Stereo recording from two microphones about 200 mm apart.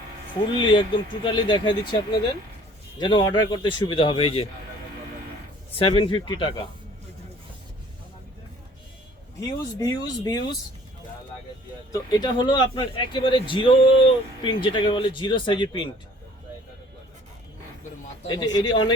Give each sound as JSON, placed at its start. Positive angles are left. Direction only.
{"t": 0.6, "sound": "speech", "side_deg": 25}
{"t": 5.7, "sound": "speech", "side_deg": 25}
{"t": 9.5, "sound": "speech", "side_deg": 20}
{"t": 11.9, "sound": "speech", "side_deg": 20}
{"t": 18.3, "sound": "speech", "side_deg": 20}